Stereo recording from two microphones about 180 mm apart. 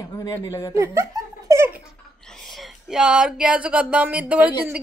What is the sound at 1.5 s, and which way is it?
Baby laughter, 15° right (ahead or behind).